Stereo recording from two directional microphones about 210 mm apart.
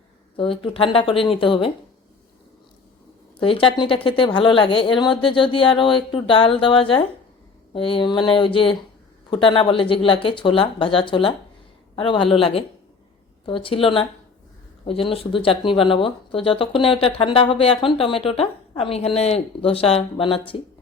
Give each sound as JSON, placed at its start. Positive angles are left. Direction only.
{"t": 0.3, "sound": "speech", "side_deg": 25}
{"t": 3.4, "sound": "speech", "side_deg": 25}